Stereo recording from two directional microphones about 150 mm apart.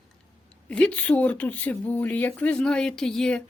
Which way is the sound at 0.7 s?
10° left (ahead or behind).